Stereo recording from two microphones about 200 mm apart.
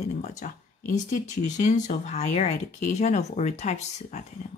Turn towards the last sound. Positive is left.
turn(degrees=35)  # may be behind; listen again after turning